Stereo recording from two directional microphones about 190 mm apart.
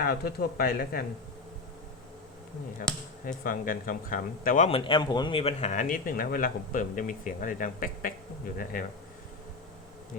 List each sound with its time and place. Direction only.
0.0 s speech: 55° left (ahead or behind)
2.9 s speech: 5° left (ahead or behind)
3.4 s speech: 45° left (ahead or behind)
4.8 s speech: 25° left (ahead or behind); by 8.1 s 45° left (ahead or behind)